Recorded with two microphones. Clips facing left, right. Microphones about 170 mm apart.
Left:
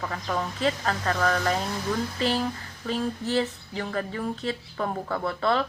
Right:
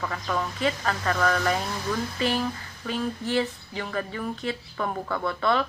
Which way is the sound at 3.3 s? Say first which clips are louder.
Even; 35° left (ahead or behind).